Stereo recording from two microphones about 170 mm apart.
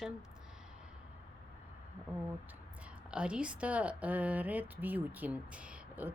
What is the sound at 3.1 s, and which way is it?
Speech, 5° right (ahead or behind).